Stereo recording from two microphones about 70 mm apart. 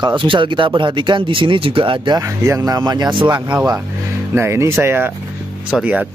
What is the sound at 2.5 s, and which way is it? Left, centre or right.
Speech, right.